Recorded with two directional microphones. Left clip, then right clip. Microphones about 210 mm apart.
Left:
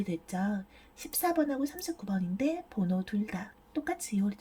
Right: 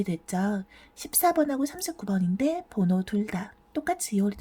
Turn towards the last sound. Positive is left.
turn(degrees=-20)  # may be behind; listen again after turning